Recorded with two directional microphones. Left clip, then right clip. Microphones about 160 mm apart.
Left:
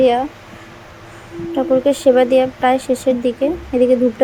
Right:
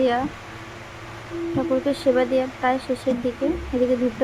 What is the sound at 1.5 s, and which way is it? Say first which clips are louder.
Speech: left 9 dB; 15° left (ahead or behind).